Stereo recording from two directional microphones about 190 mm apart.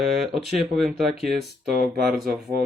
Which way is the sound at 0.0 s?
Centre (ahead or behind).